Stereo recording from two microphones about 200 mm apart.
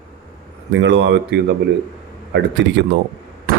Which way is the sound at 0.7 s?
60° right (ahead or behind).